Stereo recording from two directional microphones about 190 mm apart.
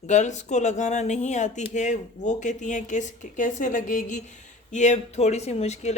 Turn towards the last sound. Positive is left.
turn(degrees=35)  # may be behind; listen again after turning